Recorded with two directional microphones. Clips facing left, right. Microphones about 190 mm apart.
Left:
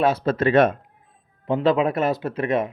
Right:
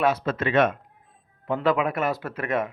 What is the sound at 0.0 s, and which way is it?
Speech, 30° left (ahead or behind).